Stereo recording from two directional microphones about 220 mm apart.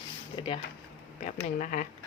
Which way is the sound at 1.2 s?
35° left (ahead or behind).